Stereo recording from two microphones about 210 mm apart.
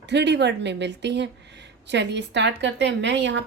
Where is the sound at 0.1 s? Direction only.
55° right (ahead or behind).